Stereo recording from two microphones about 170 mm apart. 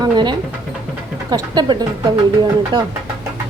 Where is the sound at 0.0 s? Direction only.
25° right (ahead or behind).